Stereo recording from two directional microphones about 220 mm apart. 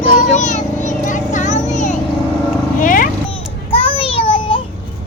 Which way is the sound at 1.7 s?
35° left (ahead or behind).